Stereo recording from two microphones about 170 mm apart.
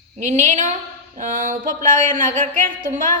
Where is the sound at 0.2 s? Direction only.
45° right (ahead or behind).